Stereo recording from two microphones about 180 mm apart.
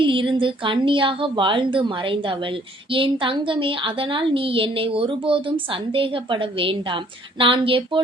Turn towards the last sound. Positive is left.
turn(degrees=-30)  # may be behind; listen again after turning